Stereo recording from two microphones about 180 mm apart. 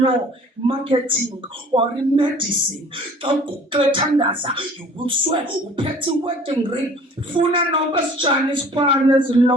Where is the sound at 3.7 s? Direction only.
25° right (ahead or behind).